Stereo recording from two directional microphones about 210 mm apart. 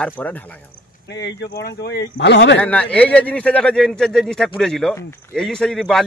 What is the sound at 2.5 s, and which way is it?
Speech, 5° left (ahead or behind).